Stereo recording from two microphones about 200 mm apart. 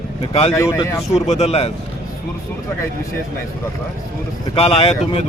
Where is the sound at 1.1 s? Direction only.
35° left (ahead or behind).